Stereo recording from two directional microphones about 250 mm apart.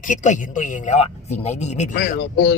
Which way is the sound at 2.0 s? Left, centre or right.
Left.